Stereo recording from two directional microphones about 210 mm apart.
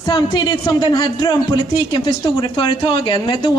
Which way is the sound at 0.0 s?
20° left (ahead or behind).